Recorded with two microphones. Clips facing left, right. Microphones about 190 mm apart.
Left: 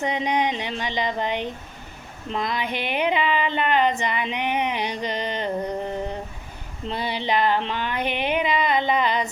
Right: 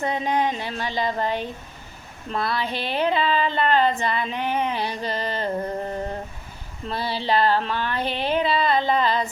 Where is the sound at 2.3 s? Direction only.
15° left (ahead or behind).